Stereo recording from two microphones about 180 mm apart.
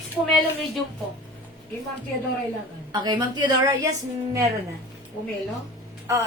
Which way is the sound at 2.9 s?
25° right (ahead or behind).